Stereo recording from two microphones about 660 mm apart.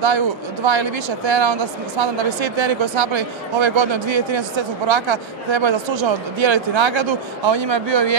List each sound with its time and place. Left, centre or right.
0.7 s speech: right